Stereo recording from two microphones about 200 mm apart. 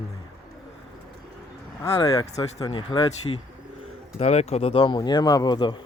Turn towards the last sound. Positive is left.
turn(degrees=20)  # may be behind; listen again after turning